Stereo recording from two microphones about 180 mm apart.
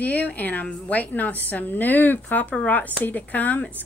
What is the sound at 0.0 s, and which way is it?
A woman's voice, 10° left (ahead or behind).